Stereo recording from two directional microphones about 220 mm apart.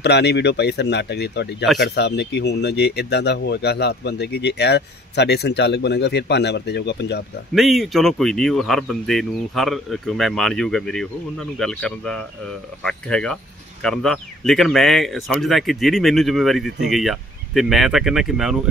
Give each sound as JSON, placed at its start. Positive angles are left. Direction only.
{"t": 0.0, "sound": "speech", "side_deg": 50}
{"t": 7.5, "sound": "speech", "side_deg": 0}